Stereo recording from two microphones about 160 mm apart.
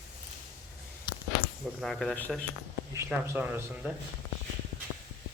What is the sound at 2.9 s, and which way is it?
Speech, 15° right (ahead or behind).